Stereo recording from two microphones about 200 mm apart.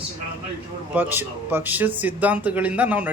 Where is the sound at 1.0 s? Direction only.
10° right (ahead or behind).